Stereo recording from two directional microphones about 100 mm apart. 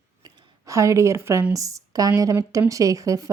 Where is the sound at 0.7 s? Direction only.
30° right (ahead or behind).